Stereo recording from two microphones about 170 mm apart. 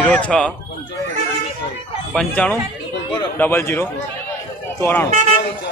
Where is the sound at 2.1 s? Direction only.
10° left (ahead or behind).